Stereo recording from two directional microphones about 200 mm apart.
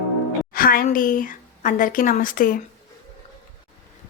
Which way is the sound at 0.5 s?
45° left (ahead or behind).